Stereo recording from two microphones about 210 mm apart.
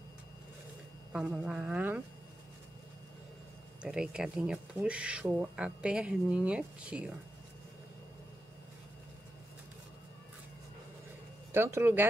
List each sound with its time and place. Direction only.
1.1 s speech: 5° right (ahead or behind)
3.8 s speech: 5° right (ahead or behind)
11.5 s speech: 10° right (ahead or behind)